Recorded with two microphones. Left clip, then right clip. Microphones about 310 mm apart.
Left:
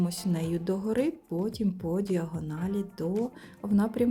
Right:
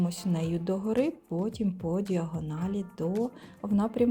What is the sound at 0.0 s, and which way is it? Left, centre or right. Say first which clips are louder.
Speech: even; centre.